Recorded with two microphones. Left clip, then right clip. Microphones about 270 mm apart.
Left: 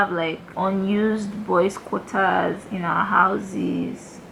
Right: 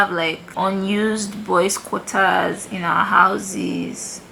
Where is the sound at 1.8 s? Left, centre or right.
Centre.